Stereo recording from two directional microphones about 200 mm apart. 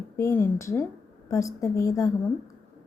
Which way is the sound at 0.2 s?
10° left (ahead or behind).